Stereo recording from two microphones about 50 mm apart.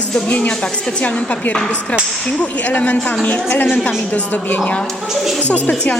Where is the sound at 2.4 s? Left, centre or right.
Left.